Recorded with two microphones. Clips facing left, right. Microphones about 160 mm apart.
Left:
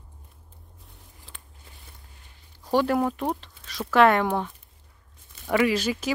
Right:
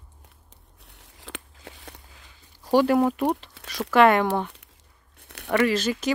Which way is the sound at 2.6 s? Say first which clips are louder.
Right 3 dB; 5° right (ahead or behind).